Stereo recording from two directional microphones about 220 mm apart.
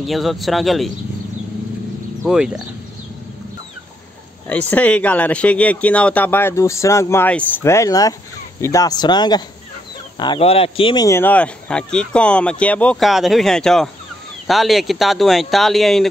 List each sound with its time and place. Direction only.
0.0 s speech: centre (ahead or behind)
2.2 s speech: 5° right (ahead or behind)
4.5 s speech: 5° left (ahead or behind)